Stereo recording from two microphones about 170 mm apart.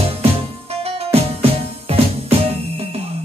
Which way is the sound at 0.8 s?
35° right (ahead or behind).